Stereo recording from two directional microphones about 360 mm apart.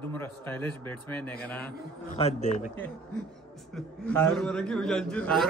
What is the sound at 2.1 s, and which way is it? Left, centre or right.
Speech, centre.